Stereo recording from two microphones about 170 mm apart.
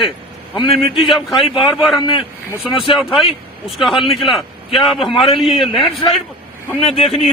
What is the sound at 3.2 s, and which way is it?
Speech, 35° left (ahead or behind).